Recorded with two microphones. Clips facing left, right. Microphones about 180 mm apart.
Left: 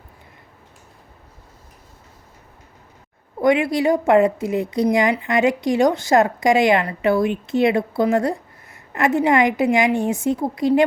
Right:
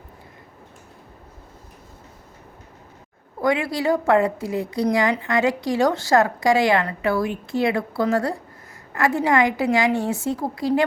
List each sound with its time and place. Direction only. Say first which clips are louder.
3.4 s a woman's voice: left 4 dB; 20° left (ahead or behind)